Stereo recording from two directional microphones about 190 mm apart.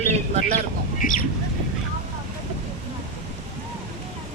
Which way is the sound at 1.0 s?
45° left (ahead or behind).